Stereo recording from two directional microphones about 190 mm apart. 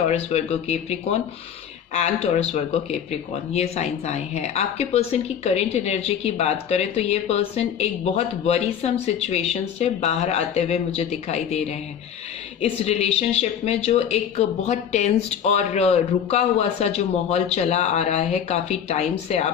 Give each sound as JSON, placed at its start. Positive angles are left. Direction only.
{"t": 0.1, "sound": "speech", "side_deg": 35}
{"t": 12.6, "sound": "speech", "side_deg": 35}